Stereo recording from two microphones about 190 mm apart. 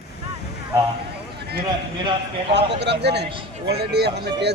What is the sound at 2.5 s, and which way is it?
Speech, 65° right (ahead or behind).